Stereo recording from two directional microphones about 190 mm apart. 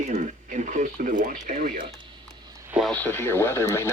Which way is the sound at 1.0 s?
45° right (ahead or behind).